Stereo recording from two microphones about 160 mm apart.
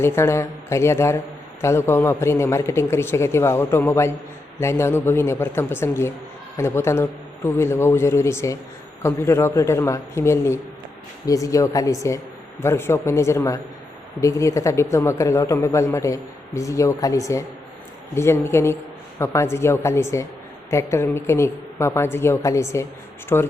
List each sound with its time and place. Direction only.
0.0 s a man's voice: 15° left (ahead or behind)